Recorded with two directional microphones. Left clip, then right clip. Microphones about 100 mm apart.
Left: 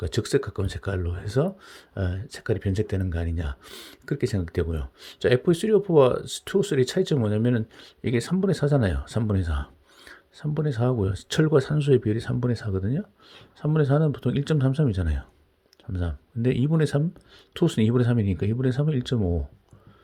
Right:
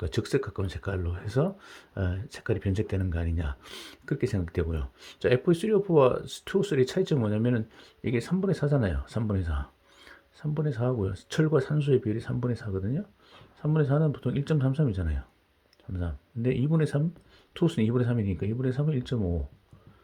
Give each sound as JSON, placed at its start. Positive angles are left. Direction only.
{"t": 0.0, "sound": "speech", "side_deg": 20}
{"t": 4.0, "sound": "speech", "side_deg": 20}